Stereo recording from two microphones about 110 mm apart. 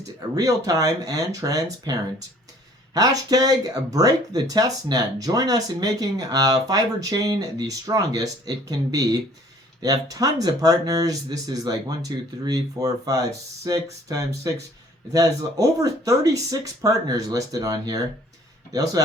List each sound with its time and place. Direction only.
0.3 s speech: 30° right (ahead or behind)